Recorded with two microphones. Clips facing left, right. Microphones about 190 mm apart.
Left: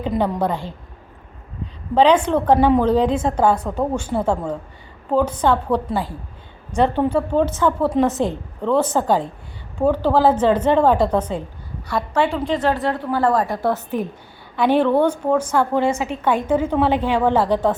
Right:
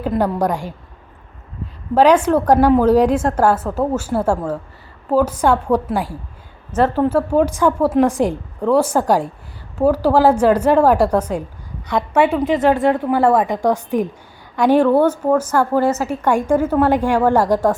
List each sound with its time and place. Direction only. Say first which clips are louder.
0.0 s a woman's voice: right 2 dB; 5° right (ahead or behind)
2.0 s a woman's voice: right 2 dB; 10° right (ahead or behind)
11.9 s a woman's voice: right 4 dB; 20° right (ahead or behind)